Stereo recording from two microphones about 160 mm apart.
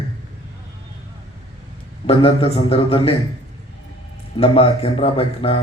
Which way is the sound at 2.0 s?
35° left (ahead or behind).